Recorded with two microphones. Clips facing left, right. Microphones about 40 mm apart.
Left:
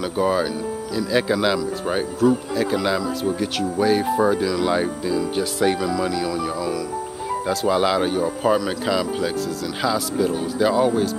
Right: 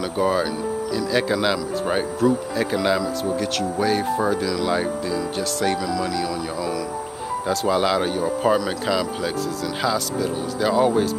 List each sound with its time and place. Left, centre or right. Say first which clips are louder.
0.0 s speech: even; centre